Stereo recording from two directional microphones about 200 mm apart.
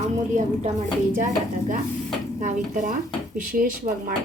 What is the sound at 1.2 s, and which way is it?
Speech, 40° right (ahead or behind).